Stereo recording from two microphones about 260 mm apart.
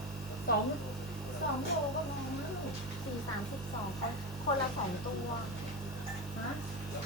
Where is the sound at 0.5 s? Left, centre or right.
Left.